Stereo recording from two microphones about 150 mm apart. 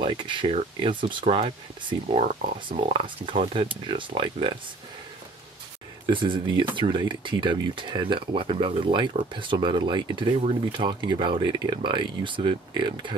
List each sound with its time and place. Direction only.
0.0 s speech: 35° right (ahead or behind)
6.0 s speech: 35° right (ahead or behind)